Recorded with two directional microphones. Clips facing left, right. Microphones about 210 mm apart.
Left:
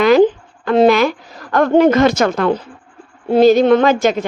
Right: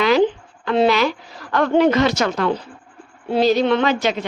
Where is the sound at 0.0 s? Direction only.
50° left (ahead or behind).